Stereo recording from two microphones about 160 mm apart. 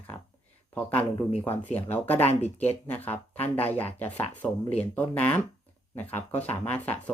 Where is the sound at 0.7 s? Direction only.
10° left (ahead or behind).